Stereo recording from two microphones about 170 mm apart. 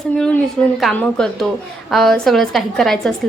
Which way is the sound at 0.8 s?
Centre (ahead or behind).